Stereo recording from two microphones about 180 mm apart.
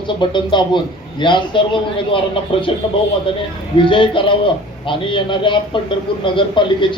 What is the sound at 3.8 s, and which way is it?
Speech, 30° left (ahead or behind).